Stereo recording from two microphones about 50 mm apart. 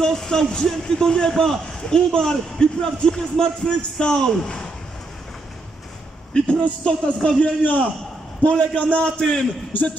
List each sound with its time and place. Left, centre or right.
0.0 s a man's voice: centre
6.3 s a man's voice: centre